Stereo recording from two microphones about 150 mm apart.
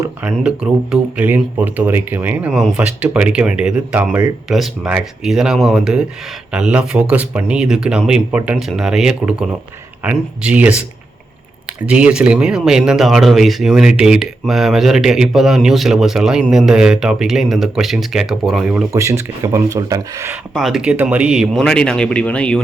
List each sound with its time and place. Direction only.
0.2 s speech: 5° right (ahead or behind)
18.9 s speech: 20° right (ahead or behind)
20.5 s speech: centre (ahead or behind)